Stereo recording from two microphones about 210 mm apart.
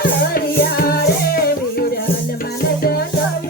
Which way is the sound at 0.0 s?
45° left (ahead or behind).